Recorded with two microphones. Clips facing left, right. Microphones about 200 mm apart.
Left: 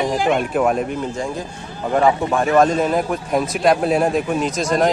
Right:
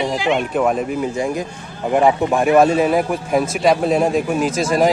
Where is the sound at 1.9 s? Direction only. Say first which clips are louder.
Right 2 dB; 10° right (ahead or behind).